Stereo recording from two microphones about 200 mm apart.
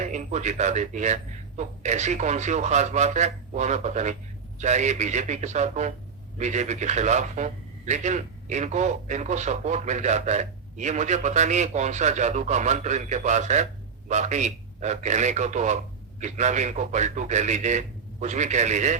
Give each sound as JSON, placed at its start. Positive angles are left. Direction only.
{"t": 0.0, "sound": "speech", "side_deg": -35}